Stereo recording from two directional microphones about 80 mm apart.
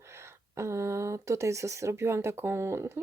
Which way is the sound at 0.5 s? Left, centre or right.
Right.